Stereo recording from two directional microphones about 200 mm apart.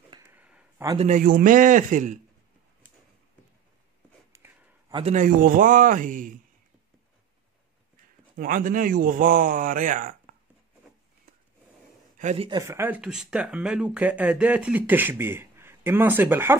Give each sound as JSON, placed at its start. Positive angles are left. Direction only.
{"t": 0.3, "sound": "a sound", "side_deg": -5}
{"t": 0.9, "sound": "a man's voice", "side_deg": -40}
{"t": 4.3, "sound": "a sound", "side_deg": -15}
{"t": 4.9, "sound": "a man's voice", "side_deg": -35}
{"t": 8.4, "sound": "speech", "side_deg": -40}
{"t": 12.2, "sound": "a man's voice", "side_deg": -35}
{"t": 12.4, "sound": "speech", "side_deg": -15}